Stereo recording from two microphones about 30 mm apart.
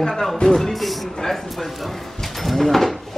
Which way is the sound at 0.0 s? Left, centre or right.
Centre.